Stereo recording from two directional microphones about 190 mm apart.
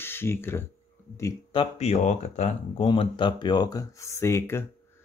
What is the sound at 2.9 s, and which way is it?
Speech, 25° left (ahead or behind).